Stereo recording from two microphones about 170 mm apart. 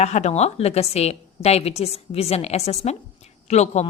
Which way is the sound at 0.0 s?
40° left (ahead or behind).